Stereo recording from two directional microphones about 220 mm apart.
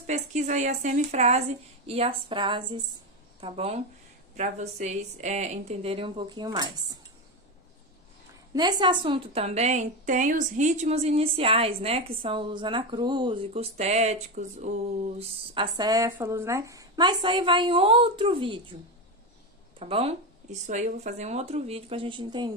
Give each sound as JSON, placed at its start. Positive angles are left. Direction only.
{"t": 0.0, "sound": "a woman's voice", "side_deg": -30}
{"t": 8.5, "sound": "a woman's voice", "side_deg": -20}
{"t": 19.8, "sound": "a woman's voice", "side_deg": -25}